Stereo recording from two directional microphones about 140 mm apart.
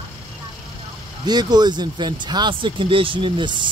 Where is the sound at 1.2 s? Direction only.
30° right (ahead or behind).